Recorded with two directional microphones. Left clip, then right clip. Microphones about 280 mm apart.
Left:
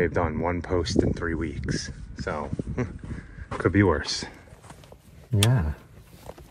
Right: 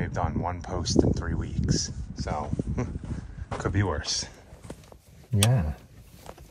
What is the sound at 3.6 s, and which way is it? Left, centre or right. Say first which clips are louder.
Speech: left 8 dB; centre.